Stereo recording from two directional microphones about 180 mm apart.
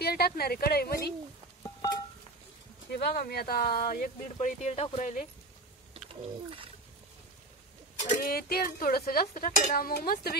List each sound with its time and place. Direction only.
0.0 s speech: 60° left (ahead or behind)
2.9 s speech: 65° left (ahead or behind); by 5.2 s 40° left (ahead or behind)
6.0 s a sound: 30° right (ahead or behind)
8.1 s speech: 55° left (ahead or behind)